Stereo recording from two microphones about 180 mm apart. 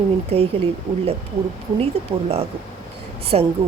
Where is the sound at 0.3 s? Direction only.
35° right (ahead or behind).